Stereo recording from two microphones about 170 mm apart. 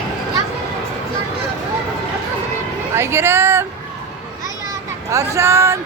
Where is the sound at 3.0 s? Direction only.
15° right (ahead or behind).